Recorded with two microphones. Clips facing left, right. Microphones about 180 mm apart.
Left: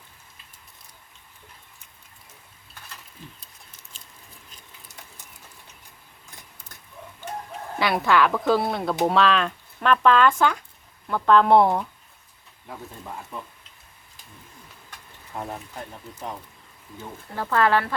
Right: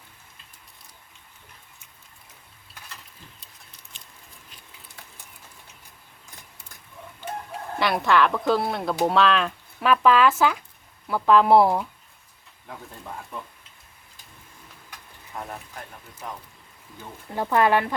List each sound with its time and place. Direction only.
7.8 s speech: centre (ahead or behind)
15.4 s speech: 20° left (ahead or behind)
17.0 s speech: 15° right (ahead or behind)